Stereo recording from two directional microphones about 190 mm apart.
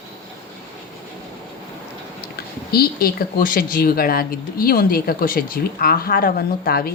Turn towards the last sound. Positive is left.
turn(degrees=50)  # may be behind; listen again after turning